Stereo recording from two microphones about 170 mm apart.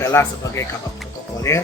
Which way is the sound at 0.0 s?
15° left (ahead or behind).